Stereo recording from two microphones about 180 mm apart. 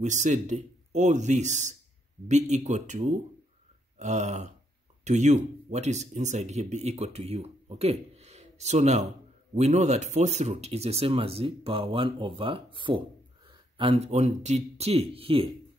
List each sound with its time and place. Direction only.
0.0 s speech: 40° right (ahead or behind)